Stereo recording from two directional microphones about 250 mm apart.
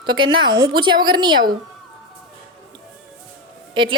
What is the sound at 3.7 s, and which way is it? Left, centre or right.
Speech, centre.